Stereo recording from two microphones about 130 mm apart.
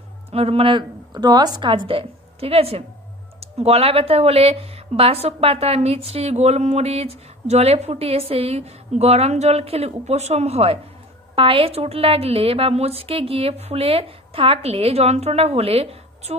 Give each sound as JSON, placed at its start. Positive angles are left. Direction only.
{"t": 0.3, "sound": "speech", "side_deg": -50}